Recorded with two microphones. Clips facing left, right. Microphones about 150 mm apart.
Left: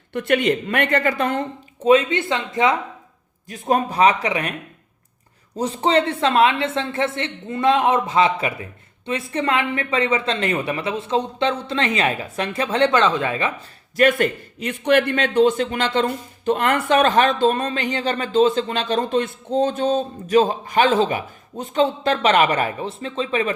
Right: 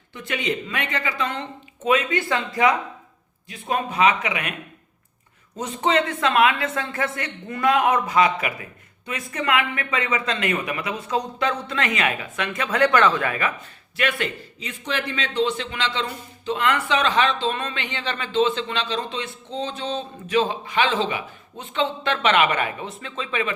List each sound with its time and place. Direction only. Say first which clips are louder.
0.1 s speech: left 8 dB; 60° left (ahead or behind)
1.8 s speech: left 6 dB; 30° left (ahead or behind)
3.5 s speech: left 5 dB; 40° left (ahead or behind)
5.5 s speech: left 3 dB; 35° left (ahead or behind)
13.9 s a man's voice: left 8 dB; 45° left (ahead or behind)